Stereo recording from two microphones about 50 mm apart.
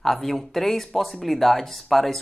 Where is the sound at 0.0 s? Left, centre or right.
Centre.